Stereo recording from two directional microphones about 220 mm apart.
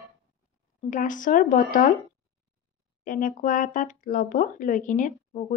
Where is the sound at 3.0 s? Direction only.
40° left (ahead or behind).